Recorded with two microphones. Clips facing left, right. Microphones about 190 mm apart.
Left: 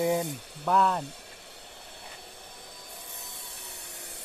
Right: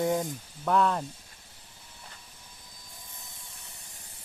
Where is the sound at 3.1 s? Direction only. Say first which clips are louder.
Left 5 dB; 65° left (ahead or behind).